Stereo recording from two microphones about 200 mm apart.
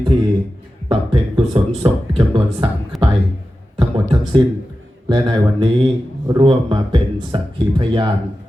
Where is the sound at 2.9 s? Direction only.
Centre (ahead or behind).